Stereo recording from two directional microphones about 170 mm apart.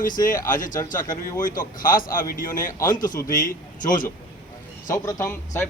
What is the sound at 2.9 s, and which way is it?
Speech, 50° left (ahead or behind).